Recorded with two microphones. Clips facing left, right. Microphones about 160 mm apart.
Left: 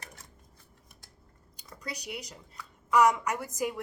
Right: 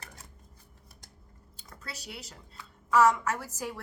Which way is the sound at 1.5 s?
15° left (ahead or behind).